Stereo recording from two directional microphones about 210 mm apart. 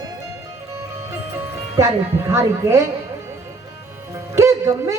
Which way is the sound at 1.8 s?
15° right (ahead or behind).